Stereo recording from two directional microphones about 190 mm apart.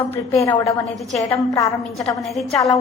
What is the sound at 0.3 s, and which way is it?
A woman's voice, 15° left (ahead or behind).